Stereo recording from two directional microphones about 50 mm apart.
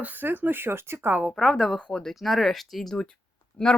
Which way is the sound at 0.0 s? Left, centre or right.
Right.